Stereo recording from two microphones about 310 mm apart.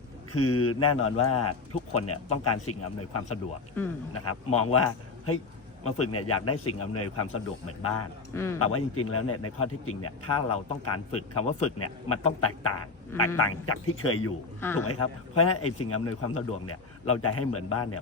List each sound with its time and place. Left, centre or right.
0.3 s a man's voice: left
8.3 s a man's voice: centre
8.5 s a man's voice: left
14.6 s a man's voice: centre
15.4 s a man's voice: left